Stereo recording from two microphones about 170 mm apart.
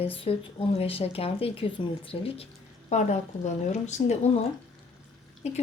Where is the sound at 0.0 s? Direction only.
35° left (ahead or behind).